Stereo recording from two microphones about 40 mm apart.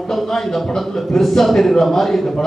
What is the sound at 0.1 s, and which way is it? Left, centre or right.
A man's voice, centre.